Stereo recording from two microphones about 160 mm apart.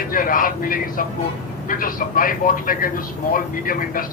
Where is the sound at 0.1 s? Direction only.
60° left (ahead or behind).